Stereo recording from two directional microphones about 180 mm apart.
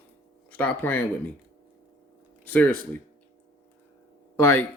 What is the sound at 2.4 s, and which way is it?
Speech, 10° left (ahead or behind).